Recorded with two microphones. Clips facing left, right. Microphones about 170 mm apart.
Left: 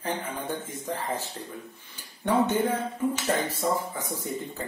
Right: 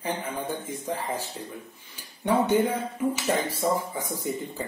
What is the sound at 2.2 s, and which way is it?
Speech, 15° right (ahead or behind).